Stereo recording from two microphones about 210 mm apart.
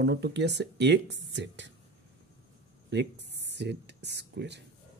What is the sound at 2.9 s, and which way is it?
Speech, 55° right (ahead or behind).